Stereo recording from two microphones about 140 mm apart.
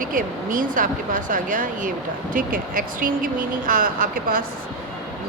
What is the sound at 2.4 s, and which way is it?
Speech, 85° right.